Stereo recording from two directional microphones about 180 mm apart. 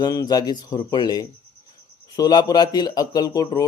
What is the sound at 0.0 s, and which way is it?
Speech, 20° left (ahead or behind).